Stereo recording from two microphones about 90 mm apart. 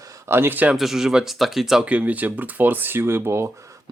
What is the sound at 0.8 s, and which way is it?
Speech, 5° right (ahead or behind).